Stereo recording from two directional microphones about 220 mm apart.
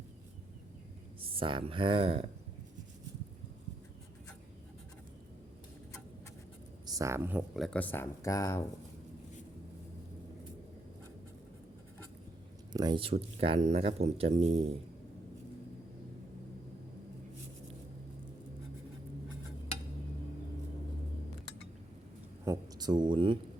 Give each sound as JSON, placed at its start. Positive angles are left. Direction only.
{"t": 1.2, "sound": "speech", "side_deg": -25}
{"t": 6.8, "sound": "speech", "side_deg": -15}
{"t": 12.7, "sound": "speech", "side_deg": -20}
{"t": 22.4, "sound": "a sound", "side_deg": -20}